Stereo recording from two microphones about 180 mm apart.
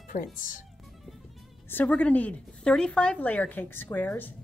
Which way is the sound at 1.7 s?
10° left (ahead or behind).